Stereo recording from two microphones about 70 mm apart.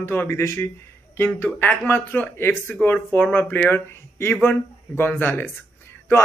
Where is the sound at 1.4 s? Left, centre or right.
Left.